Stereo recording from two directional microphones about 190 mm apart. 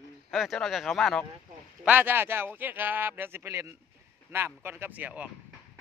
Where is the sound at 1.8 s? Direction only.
10° right (ahead or behind).